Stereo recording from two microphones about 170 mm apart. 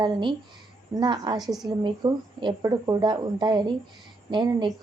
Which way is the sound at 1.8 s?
25° right (ahead or behind).